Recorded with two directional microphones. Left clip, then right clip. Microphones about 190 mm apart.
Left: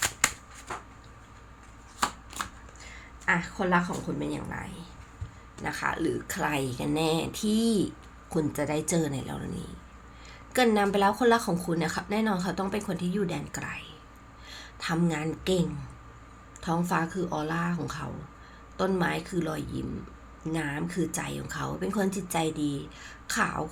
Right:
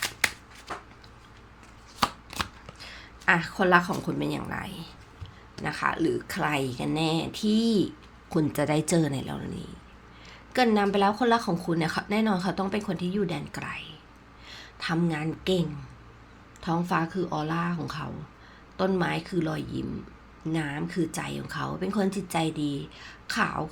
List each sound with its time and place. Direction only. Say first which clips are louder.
2.4 s a woman's voice: right 3 dB; 25° right (ahead or behind); by 23.6 s 10° right (ahead or behind)